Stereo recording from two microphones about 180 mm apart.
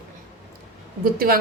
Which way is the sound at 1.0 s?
55° right (ahead or behind).